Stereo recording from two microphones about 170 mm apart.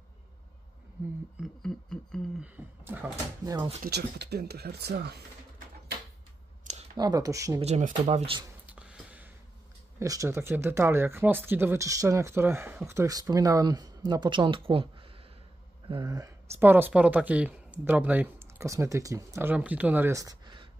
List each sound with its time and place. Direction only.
1.4 s a sound: 5° left (ahead or behind)
2.4 s speech: 10° right (ahead or behind)
3.8 s speech: 75° right (ahead or behind)
6.6 s a sound: 40° right (ahead or behind)
7.0 s speech: 20° right (ahead or behind)
7.6 s speech: 40° right (ahead or behind)
8.6 s a sound: 5° right (ahead or behind)
9.9 s speech: 20° right (ahead or behind)
15.9 s speech: 25° right (ahead or behind)